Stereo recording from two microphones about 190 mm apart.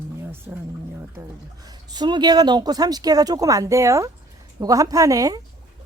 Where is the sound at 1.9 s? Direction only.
20° right (ahead or behind).